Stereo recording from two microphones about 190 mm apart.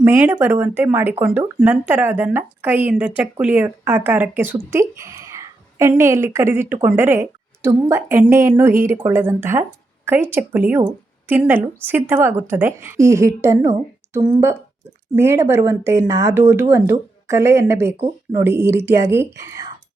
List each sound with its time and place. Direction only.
0.0 s a woman's voice: 10° right (ahead or behind)
14.2 s speech: 25° right (ahead or behind)
15.1 s speech: 15° right (ahead or behind)